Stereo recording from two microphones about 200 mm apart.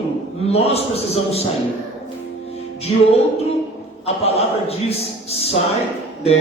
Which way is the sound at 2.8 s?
30° left (ahead or behind).